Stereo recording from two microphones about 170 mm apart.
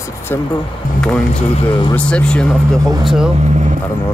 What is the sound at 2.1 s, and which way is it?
Speech, 5° left (ahead or behind).